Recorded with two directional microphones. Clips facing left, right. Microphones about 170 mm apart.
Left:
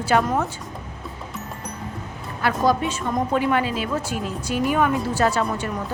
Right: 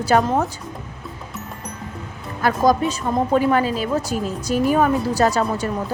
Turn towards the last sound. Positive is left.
turn(degrees=-40)  # may be behind; listen again after turning